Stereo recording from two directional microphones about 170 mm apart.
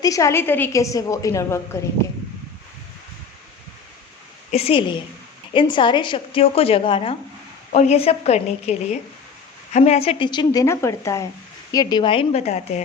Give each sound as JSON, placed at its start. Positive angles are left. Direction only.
{"t": 0.0, "sound": "a woman's voice", "side_deg": 20}
{"t": 4.5, "sound": "a woman's voice", "side_deg": 35}